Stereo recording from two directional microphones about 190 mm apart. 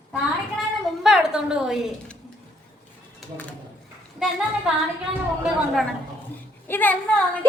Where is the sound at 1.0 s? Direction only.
5° right (ahead or behind).